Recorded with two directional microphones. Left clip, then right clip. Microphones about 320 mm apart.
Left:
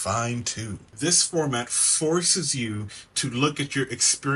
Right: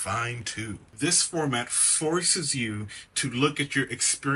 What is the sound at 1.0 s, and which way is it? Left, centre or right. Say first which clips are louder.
Speech: left 3 dB; centre.